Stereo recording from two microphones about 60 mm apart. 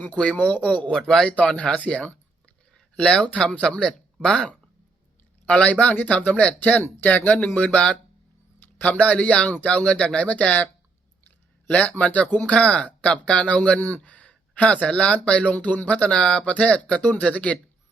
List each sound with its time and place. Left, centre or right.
0.0 s speech: left
1.4 s speech: left
5.5 s speech: centre
11.7 s speech: left